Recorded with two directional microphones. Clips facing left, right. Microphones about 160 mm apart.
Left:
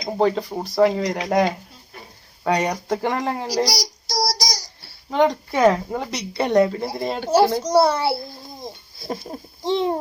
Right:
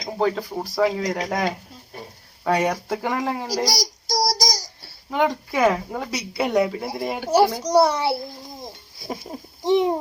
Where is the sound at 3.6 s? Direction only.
45° right (ahead or behind).